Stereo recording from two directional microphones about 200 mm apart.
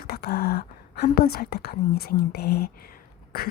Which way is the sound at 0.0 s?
50° left (ahead or behind).